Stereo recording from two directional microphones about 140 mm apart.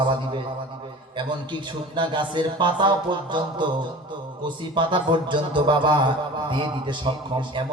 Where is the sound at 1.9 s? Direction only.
35° right (ahead or behind).